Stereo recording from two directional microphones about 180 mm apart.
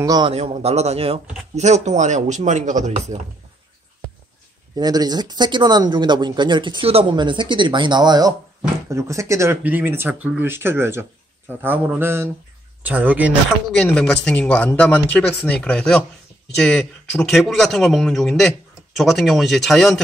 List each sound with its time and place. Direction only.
0.0 s speech: 20° right (ahead or behind)
0.3 s speech: 35° right (ahead or behind)
4.7 s speech: 20° right (ahead or behind)
13.7 s speech: 5° left (ahead or behind)